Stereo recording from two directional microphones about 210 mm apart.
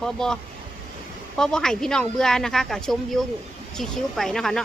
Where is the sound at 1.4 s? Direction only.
5° left (ahead or behind).